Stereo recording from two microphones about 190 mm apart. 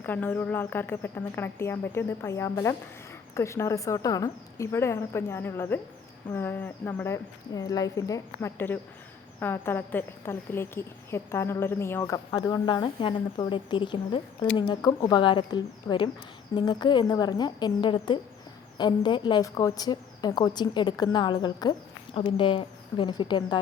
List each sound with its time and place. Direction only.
0.0 s a woman's voice: 10° left (ahead or behind)